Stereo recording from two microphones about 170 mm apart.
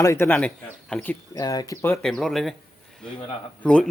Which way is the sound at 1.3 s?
20° left (ahead or behind).